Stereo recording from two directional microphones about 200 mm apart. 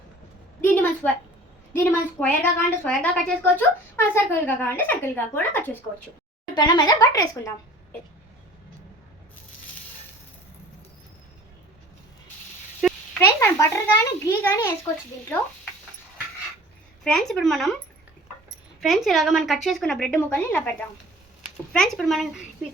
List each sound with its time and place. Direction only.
0.6 s a woman's voice: 10° left (ahead or behind)
6.5 s a woman's voice: 20° left (ahead or behind)
12.8 s a sound: 5° right (ahead or behind)
13.1 s a woman's voice: 10° left (ahead or behind)
17.0 s a woman's voice: 5° left (ahead or behind)
18.8 s a woman's voice: centre (ahead or behind)